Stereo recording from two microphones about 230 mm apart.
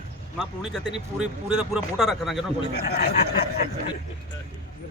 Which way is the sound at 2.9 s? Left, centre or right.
Left.